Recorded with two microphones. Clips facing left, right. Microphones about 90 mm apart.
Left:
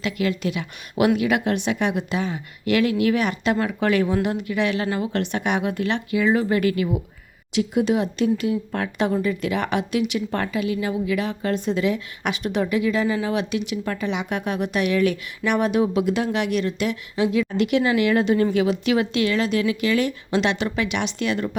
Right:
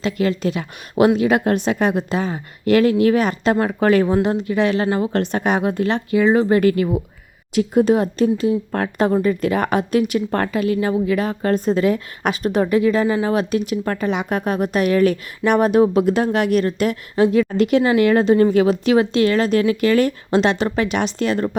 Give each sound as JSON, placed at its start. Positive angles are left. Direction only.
{"t": 0.0, "sound": "speech", "side_deg": -35}